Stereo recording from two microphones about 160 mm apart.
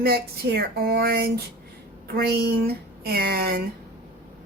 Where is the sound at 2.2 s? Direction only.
90° right.